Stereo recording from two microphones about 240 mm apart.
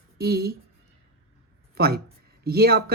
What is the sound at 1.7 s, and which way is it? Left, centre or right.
Speech, right.